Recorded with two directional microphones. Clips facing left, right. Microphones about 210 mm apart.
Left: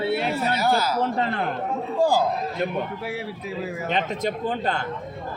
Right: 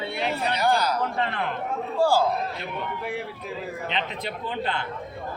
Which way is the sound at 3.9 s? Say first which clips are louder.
Left 8 dB; 45° left (ahead or behind).